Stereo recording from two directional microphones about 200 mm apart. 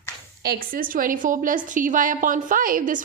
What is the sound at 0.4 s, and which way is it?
Speech, 45° right (ahead or behind).